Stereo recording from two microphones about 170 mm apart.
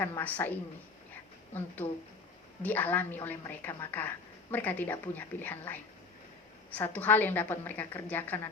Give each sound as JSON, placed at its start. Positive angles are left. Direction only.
{"t": 0.0, "sound": "a woman's voice", "side_deg": 10}
{"t": 2.6, "sound": "a woman's voice", "side_deg": 10}